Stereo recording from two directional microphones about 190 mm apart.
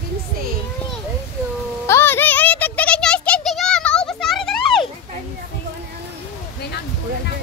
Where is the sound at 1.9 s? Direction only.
10° left (ahead or behind).